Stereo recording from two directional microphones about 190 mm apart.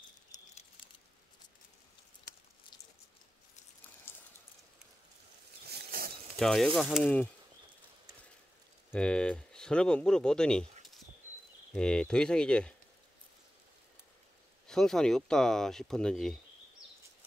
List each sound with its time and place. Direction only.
4.1 s a sound: 10° left (ahead or behind)
5.7 s a sound: 55° right (ahead or behind)
6.3 s speech: centre (ahead or behind)
8.9 s speech: 5° left (ahead or behind)
11.7 s speech: 5° left (ahead or behind)
14.7 s speech: centre (ahead or behind)